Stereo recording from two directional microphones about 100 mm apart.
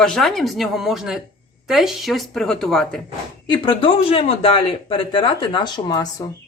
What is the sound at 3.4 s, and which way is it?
Speech, 60° left (ahead or behind).